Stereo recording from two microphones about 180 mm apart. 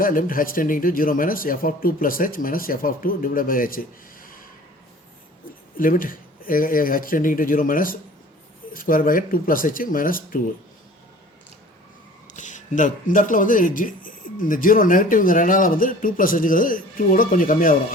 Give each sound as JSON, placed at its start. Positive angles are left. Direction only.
{"t": 0.0, "sound": "a man's voice", "side_deg": 50}
{"t": 5.7, "sound": "a man's voice", "side_deg": 50}
{"t": 12.3, "sound": "a man's voice", "side_deg": 45}